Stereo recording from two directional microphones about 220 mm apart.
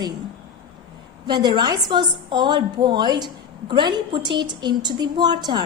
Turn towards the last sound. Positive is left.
turn(degrees=-20)  # may be behind; listen again after turning